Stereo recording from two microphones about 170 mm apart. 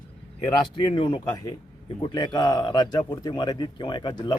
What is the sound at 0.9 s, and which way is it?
A man's voice, 30° left (ahead or behind).